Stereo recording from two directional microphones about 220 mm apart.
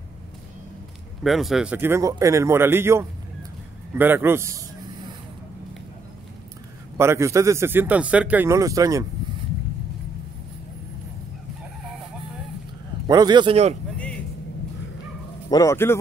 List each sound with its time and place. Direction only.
1.2 s speech: centre (ahead or behind)
7.0 s speech: 10° right (ahead or behind)
13.0 s speech: 20° right (ahead or behind)
15.5 s a man's voice: 15° left (ahead or behind)